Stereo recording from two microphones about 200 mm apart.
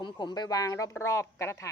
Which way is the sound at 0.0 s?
20° left (ahead or behind).